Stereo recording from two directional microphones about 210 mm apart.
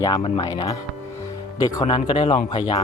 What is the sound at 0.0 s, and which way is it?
Speech, 20° left (ahead or behind).